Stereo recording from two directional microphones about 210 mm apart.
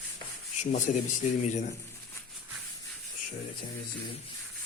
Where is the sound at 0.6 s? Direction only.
35° left (ahead or behind).